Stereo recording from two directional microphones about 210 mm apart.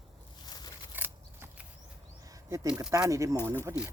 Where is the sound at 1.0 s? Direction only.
10° right (ahead or behind).